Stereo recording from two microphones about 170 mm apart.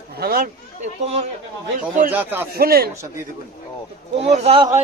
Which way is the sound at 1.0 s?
40° right (ahead or behind).